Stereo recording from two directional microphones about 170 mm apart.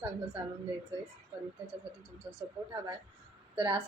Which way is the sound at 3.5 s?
30° right (ahead or behind).